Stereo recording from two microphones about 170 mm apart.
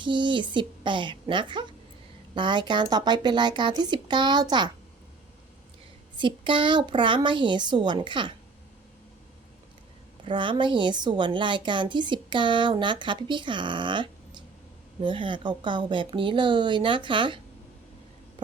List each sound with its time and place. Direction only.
0.0 s a woman's voice: 30° right (ahead or behind)
6.1 s a woman's voice: 30° right (ahead or behind)
10.2 s a woman's voice: 30° right (ahead or behind)